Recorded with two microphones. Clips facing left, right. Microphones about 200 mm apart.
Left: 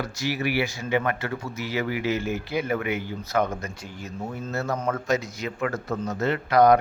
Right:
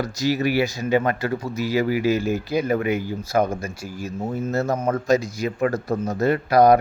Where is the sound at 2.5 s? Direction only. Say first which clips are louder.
Right 5 dB; 35° right (ahead or behind).